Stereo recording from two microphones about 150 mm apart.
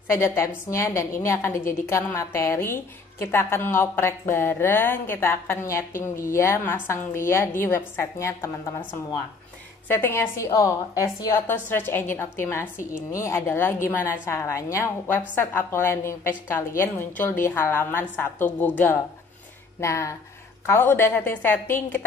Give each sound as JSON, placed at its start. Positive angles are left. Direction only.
{"t": 0.1, "sound": "a woman's voice", "side_deg": 20}
{"t": 9.8, "sound": "a woman's voice", "side_deg": 15}